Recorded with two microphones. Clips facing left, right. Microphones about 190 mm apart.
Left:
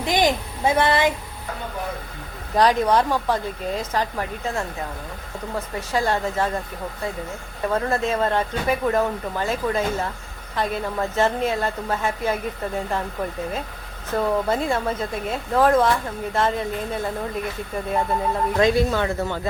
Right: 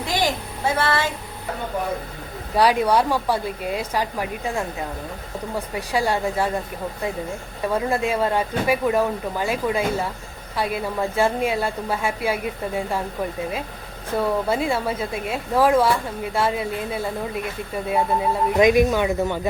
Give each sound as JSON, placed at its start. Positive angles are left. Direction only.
{"t": 0.0, "sound": "a sound", "side_deg": 20}
{"t": 2.6, "sound": "speech", "side_deg": -10}
{"t": 7.7, "sound": "speech", "side_deg": -10}
{"t": 14.1, "sound": "speech", "side_deg": -10}
{"t": 18.5, "sound": "speech", "side_deg": -15}